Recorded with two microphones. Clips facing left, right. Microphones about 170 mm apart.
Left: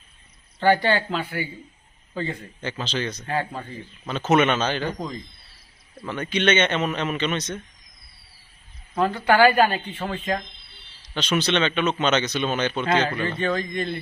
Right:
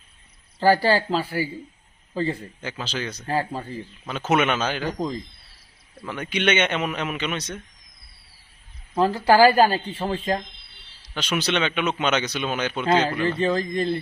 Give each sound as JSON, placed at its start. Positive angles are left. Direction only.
{"t": 0.6, "sound": "speech", "side_deg": -35}
{"t": 2.6, "sound": "speech", "side_deg": -5}
{"t": 3.2, "sound": "speech", "side_deg": -35}
{"t": 4.1, "sound": "speech", "side_deg": -10}
{"t": 6.1, "sound": "speech", "side_deg": -10}
{"t": 9.0, "sound": "speech", "side_deg": -35}
{"t": 11.0, "sound": "speech", "side_deg": -10}
{"t": 13.4, "sound": "speech", "side_deg": -30}